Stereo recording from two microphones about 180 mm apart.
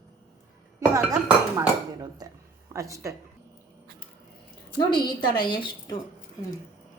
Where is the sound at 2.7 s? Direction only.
15° right (ahead or behind).